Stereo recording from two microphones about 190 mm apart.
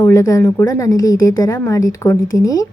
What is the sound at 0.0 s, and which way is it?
A woman's voice, 15° left (ahead or behind).